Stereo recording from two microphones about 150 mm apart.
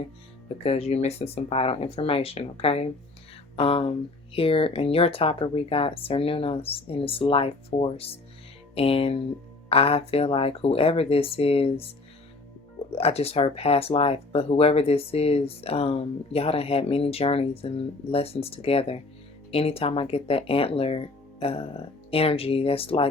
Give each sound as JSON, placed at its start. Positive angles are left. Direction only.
{"t": 0.6, "sound": "speech", "side_deg": 40}
{"t": 12.9, "sound": "speech", "side_deg": 40}